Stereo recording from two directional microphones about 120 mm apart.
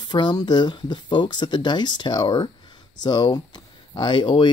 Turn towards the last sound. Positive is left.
turn(degrees=40)  # may be behind; listen again after turning